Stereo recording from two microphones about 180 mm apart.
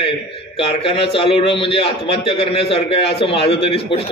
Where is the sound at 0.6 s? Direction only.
30° left (ahead or behind).